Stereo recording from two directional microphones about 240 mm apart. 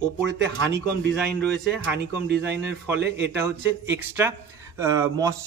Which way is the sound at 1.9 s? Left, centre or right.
Right.